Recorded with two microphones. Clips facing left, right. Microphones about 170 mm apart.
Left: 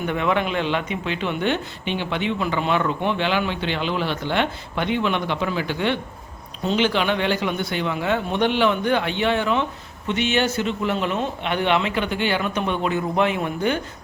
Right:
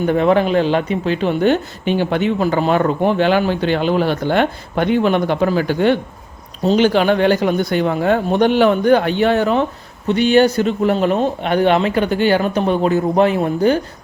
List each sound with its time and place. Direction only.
0.0 s a man's voice: 35° right (ahead or behind)